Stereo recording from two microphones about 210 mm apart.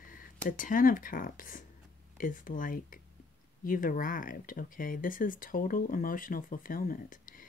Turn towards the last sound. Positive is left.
turn(degrees=40)  # may be behind; listen again after turning